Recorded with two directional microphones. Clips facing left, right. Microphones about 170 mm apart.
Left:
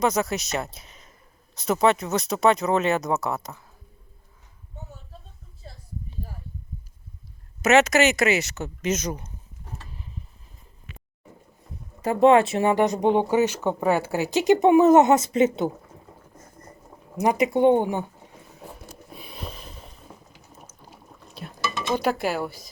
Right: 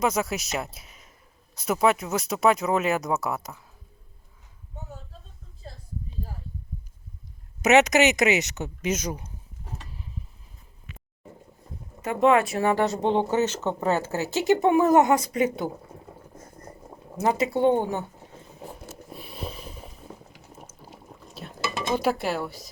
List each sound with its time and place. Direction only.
0.0 s speech: 10° right (ahead or behind)
7.6 s speech: 15° right (ahead or behind)
12.0 s speech: 30° left (ahead or behind)
17.2 s speech: 15° left (ahead or behind)
18.9 s snort: centre (ahead or behind)
20.8 s a sound: 5° right (ahead or behind)
21.9 s speech: centre (ahead or behind)